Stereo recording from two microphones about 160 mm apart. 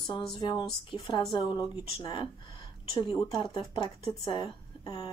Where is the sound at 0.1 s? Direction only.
25° left (ahead or behind).